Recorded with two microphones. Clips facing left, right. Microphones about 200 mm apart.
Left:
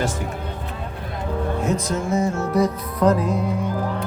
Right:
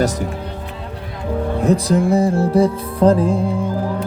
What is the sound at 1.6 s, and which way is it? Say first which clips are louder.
Music: right 12 dB; 35° right (ahead or behind).